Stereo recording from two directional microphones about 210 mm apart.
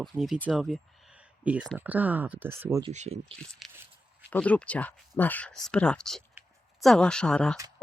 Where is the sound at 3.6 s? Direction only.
Centre (ahead or behind).